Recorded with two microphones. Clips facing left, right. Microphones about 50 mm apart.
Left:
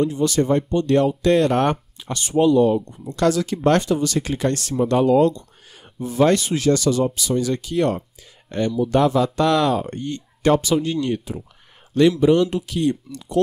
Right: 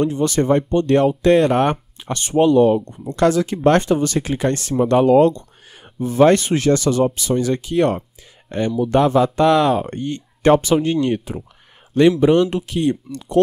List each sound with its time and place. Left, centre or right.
0.0 s speech: right; by 1.8 s centre
2.0 s speech: right
3.2 s speech: right
3.8 s speech: right
4.2 s speech: centre
13.1 s speech: right